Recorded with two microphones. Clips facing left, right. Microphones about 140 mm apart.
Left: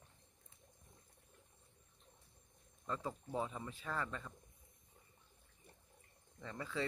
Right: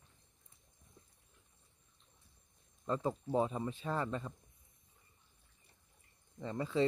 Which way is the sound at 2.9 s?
30° right (ahead or behind).